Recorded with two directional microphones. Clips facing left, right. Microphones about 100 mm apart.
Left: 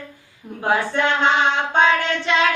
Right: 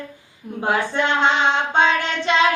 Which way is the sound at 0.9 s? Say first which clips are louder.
Even; 20° right (ahead or behind).